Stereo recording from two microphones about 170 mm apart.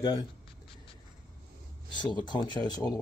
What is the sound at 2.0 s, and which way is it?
Speech, 25° left (ahead or behind).